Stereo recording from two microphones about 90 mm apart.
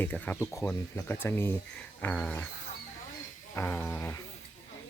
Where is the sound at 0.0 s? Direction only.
20° left (ahead or behind).